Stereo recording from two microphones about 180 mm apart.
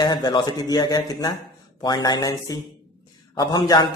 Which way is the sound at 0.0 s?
25° left (ahead or behind).